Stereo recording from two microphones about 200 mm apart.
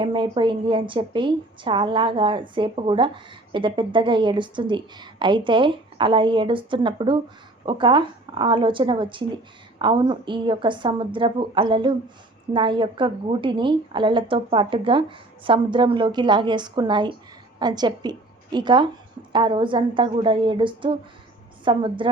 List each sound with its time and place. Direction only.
0.0 s a woman's voice: 25° right (ahead or behind)